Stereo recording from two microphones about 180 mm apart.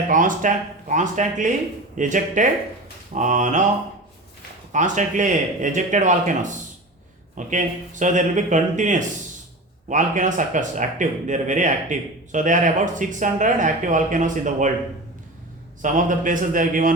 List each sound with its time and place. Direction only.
0.1 s speech: 45° right (ahead or behind)
4.7 s speech: 45° right (ahead or behind)
15.8 s speech: 45° right (ahead or behind)